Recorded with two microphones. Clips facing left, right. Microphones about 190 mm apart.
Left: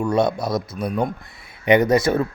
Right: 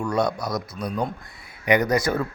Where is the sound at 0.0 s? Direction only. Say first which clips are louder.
Left 4 dB; 25° left (ahead or behind).